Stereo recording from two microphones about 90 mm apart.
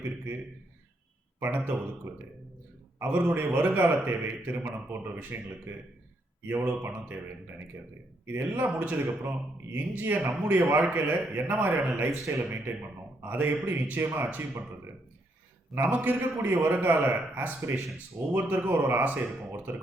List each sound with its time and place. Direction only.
1.4 s a man's voice: 20° right (ahead or behind)
3.0 s a man's voice: 20° right (ahead or behind)
8.3 s a man's voice: 20° right (ahead or behind)
15.7 s a man's voice: 20° right (ahead or behind)